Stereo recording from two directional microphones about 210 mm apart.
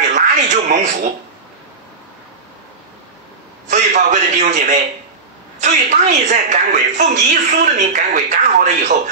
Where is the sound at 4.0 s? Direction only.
35° right (ahead or behind).